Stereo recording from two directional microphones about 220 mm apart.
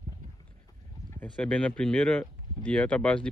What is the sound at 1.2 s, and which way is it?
Speech, 5° left (ahead or behind).